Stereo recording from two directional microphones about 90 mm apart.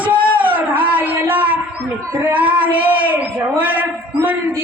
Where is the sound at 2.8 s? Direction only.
15° right (ahead or behind).